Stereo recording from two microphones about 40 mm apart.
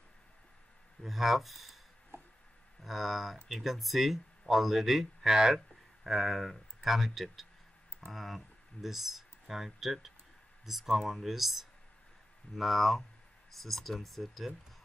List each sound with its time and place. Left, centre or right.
1.0 s speech: centre
2.1 s a sound: right
2.8 s speech: centre
6.0 s speech: centre